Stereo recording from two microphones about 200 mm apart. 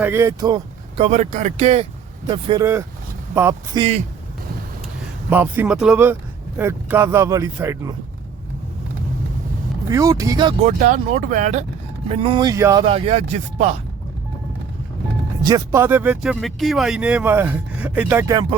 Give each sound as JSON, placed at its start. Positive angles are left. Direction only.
{"t": 0.0, "sound": "speech", "side_deg": -10}
{"t": 3.8, "sound": "speech", "side_deg": -30}
{"t": 5.3, "sound": "speech", "side_deg": -10}
{"t": 9.9, "sound": "speech", "side_deg": -15}
{"t": 10.6, "sound": "speech", "side_deg": -40}
{"t": 12.0, "sound": "speech", "side_deg": -30}
{"t": 12.8, "sound": "speech", "side_deg": -25}
{"t": 15.4, "sound": "speech", "side_deg": -15}